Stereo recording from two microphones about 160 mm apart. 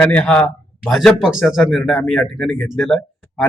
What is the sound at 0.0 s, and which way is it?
A man's voice, 10° left (ahead or behind).